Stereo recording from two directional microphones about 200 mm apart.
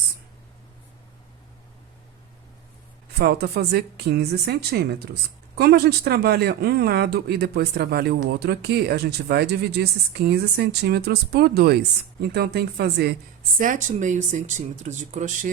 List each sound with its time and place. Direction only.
3.2 s speech: 55° right (ahead or behind)
13.6 s speech: 40° right (ahead or behind)